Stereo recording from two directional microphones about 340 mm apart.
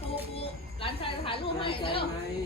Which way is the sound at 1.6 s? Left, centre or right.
Centre.